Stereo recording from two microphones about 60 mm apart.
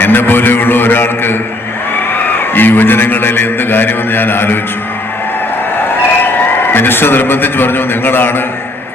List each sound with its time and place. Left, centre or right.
0.0 s a man's voice: left
2.6 s a man's voice: left
6.7 s a man's voice: left